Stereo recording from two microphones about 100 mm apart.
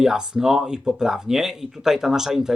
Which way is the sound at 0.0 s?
5° right (ahead or behind).